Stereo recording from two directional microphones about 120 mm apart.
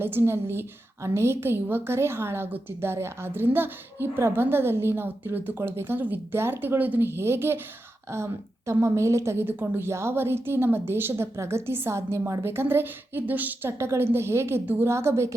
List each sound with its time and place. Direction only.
0.0 s a woman's voice: 20° right (ahead or behind)